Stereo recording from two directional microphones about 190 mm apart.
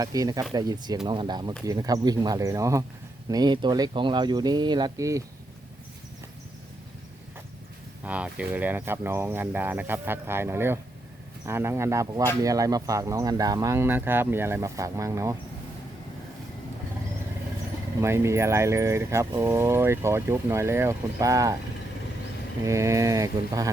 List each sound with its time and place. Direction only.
0.0 s speech: 20° right (ahead or behind)
8.0 s speech: 5° right (ahead or behind)
18.0 s speech: 15° right (ahead or behind)
22.6 s speech: 15° right (ahead or behind)